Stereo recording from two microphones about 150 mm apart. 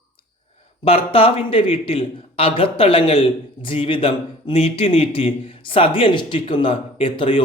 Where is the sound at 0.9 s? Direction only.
40° left (ahead or behind).